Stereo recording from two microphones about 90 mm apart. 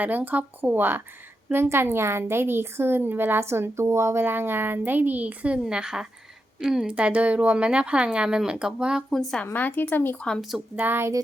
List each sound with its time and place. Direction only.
0.0 s a woman's voice: 20° right (ahead or behind)
9.0 s speech: 5° left (ahead or behind)
9.4 s speech: 20° left (ahead or behind)
10.8 s a woman's voice: 25° right (ahead or behind)